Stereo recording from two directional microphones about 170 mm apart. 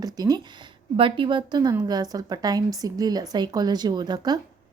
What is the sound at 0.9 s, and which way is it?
A woman's voice, 30° right (ahead or behind).